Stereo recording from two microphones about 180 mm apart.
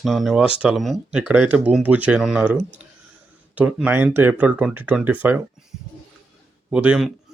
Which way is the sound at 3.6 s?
5° right (ahead or behind).